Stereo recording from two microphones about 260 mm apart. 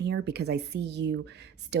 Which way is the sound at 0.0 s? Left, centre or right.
Right.